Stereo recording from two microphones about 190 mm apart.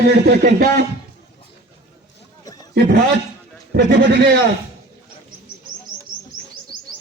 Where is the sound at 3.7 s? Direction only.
55° right (ahead or behind).